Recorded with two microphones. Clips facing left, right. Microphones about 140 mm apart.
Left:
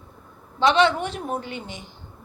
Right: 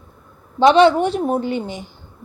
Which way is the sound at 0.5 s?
35° right (ahead or behind).